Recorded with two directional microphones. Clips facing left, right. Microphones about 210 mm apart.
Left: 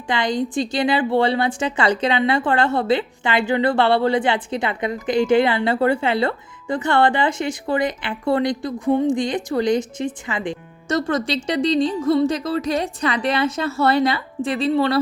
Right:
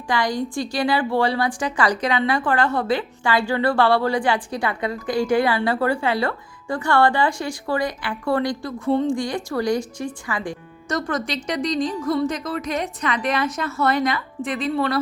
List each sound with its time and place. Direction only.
0.1 s a woman's voice: 20° left (ahead or behind)